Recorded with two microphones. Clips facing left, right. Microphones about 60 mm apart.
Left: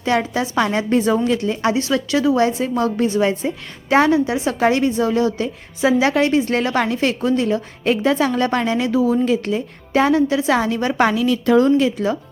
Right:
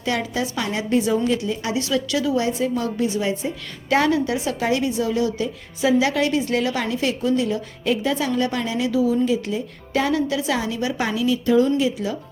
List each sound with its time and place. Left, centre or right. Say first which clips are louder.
0.0 s a woman's voice: left 5 dB; left
1.7 s a woman's voice: left 3 dB; left
3.8 s a woman's voice: left 4 dB; left
4.6 s a woman's voice: left 6 dB; left
9.9 s a woman's voice: left 5 dB; left
10.5 s a woman's voice: left 5 dB; left